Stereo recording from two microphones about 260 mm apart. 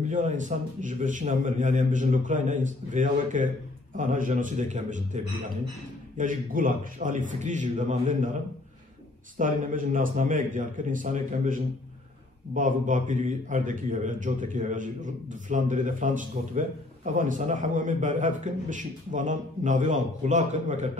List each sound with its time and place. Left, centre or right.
0.0 s a man's voice: right
9.4 s a man's voice: right